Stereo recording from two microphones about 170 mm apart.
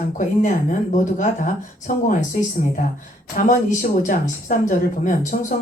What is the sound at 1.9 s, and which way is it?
Speech, 55° left (ahead or behind).